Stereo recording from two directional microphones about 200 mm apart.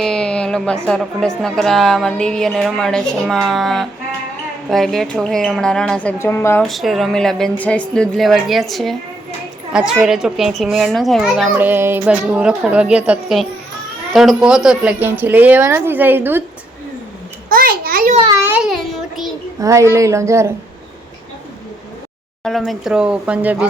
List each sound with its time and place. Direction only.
0.0 s a sound: 5° left (ahead or behind)
0.9 s a woman's voice: 5° left (ahead or behind)
6.6 s a woman's voice: centre (ahead or behind)
17.5 s a child's voice: 45° right (ahead or behind)
18.3 s child singing: 15° right (ahead or behind)
19.5 s a woman's voice: 15° right (ahead or behind)
22.4 s a woman's voice: centre (ahead or behind)